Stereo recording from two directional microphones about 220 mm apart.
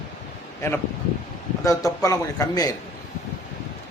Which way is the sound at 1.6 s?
15° left (ahead or behind).